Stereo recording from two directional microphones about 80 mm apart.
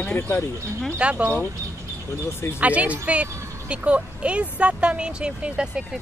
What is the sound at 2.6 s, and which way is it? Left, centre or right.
Speech, centre.